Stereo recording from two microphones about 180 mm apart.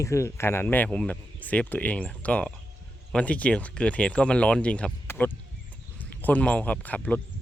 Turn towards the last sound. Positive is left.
turn(degrees=10)  # may be behind; listen again after turning